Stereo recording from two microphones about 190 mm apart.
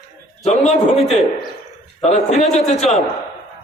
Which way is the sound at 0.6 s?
Centre (ahead or behind).